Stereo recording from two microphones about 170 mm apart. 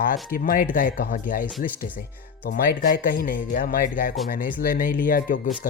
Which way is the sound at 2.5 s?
60° left (ahead or behind).